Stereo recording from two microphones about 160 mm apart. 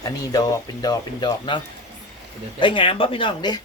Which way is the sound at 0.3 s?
25° left (ahead or behind).